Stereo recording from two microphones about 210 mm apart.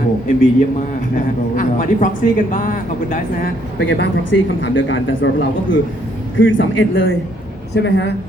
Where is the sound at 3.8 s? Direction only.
60° left (ahead or behind).